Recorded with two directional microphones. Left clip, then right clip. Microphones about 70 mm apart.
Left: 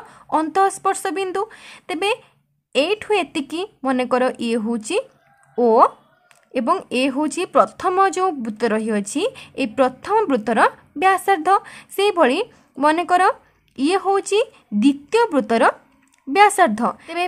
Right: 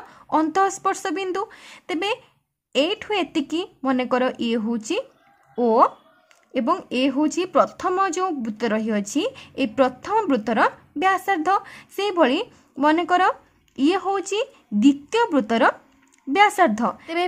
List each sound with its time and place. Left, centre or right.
0.1 s a woman's voice: centre
4.7 s a woman's voice: left
9.3 s a woman's voice: centre
9.8 s a woman's voice: centre
11.6 s speech: centre